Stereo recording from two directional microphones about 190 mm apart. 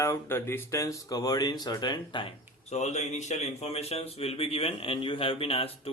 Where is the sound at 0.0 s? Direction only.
15° left (ahead or behind).